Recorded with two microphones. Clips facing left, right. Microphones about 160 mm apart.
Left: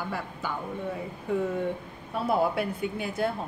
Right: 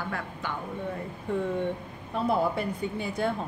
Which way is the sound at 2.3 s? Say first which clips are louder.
Left 1 dB; 5° left (ahead or behind).